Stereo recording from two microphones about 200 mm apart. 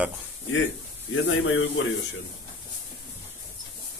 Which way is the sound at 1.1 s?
70° left (ahead or behind).